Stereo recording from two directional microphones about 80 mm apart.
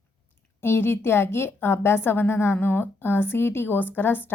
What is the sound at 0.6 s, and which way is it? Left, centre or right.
A woman's voice, left.